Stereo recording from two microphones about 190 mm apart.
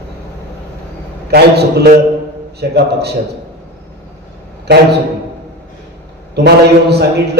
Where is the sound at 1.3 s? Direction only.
55° right (ahead or behind).